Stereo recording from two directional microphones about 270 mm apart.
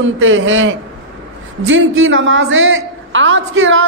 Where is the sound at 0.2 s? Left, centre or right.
Right.